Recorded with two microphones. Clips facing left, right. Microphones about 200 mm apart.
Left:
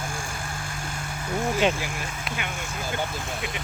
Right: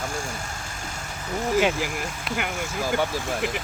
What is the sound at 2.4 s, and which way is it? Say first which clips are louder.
Speech: right 7 dB; 80° right.